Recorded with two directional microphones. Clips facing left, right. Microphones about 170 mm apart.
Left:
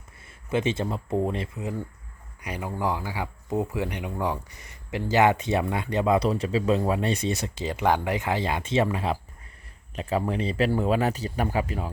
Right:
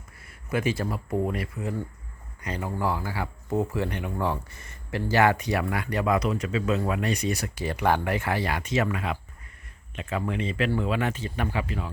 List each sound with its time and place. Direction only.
0.3 s speech: 25° left (ahead or behind); by 11.9 s 40° left (ahead or behind)